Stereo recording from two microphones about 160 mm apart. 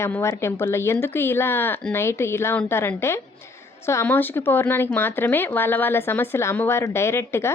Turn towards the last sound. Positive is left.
turn(degrees=15)  # may be behind; listen again after turning